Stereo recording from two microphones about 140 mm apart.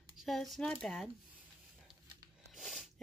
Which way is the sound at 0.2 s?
Centre (ahead or behind).